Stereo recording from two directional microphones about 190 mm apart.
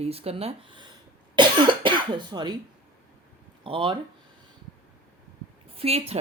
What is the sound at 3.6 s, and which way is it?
Speech, 25° right (ahead or behind).